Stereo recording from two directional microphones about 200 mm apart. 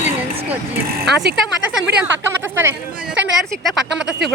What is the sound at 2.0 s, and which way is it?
Speech, 10° right (ahead or behind).